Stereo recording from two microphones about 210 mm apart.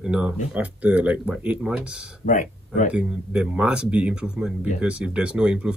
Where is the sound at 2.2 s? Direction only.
35° left (ahead or behind).